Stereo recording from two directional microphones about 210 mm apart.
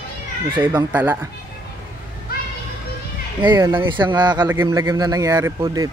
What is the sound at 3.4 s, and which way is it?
Speech, 15° right (ahead or behind).